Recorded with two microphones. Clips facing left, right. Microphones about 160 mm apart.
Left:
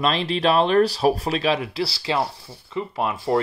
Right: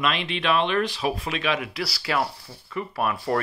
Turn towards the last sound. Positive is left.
turn(degrees=20)  # may be behind; listen again after turning